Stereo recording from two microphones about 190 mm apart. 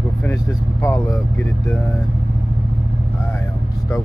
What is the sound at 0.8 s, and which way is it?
Speech, 15° left (ahead or behind).